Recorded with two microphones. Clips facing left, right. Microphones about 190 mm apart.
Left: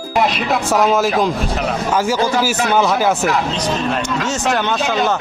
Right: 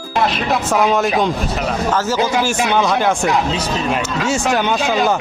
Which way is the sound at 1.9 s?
10° left (ahead or behind).